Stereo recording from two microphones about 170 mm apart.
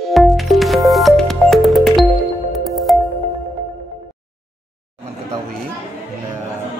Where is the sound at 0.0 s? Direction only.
Centre (ahead or behind).